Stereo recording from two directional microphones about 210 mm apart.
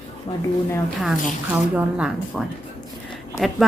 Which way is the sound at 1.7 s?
5° right (ahead or behind).